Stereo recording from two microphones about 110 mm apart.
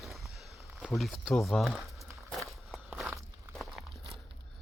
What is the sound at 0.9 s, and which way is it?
Speech, centre (ahead or behind).